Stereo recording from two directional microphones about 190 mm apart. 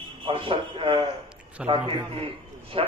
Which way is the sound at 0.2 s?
25° right (ahead or behind).